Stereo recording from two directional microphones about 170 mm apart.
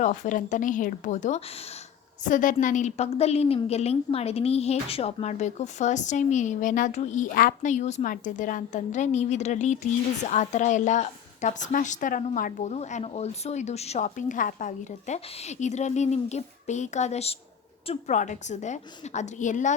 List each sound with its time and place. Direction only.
0.0 s a woman's voice: 50° left (ahead or behind)
2.2 s a woman's voice: 50° left (ahead or behind)